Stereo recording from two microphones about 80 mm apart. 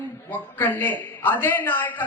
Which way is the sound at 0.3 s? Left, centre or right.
Left.